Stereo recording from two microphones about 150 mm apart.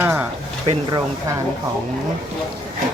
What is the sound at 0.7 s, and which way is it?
Speech, 30° right (ahead or behind).